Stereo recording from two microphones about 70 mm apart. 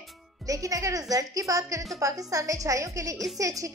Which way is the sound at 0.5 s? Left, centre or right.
Right.